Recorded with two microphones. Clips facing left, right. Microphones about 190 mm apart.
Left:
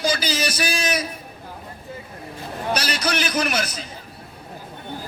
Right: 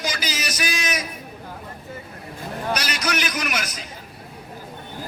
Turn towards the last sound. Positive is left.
turn(degrees=30)  # may be behind; listen again after turning